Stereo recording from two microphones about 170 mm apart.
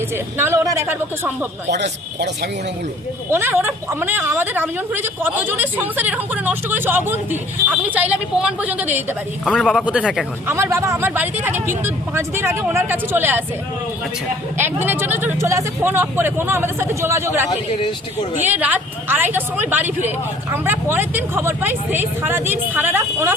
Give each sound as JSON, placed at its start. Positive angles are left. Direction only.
{"t": 0.1, "sound": "a woman's voice", "side_deg": -15}
{"t": 1.6, "sound": "speech", "side_deg": -85}
{"t": 3.3, "sound": "a woman's voice", "side_deg": -15}
{"t": 9.4, "sound": "speech", "side_deg": 0}
{"t": 10.5, "sound": "a woman's voice", "side_deg": -15}
{"t": 14.6, "sound": "a woman's voice", "side_deg": -10}
{"t": 18.4, "sound": "a woman's voice", "side_deg": -10}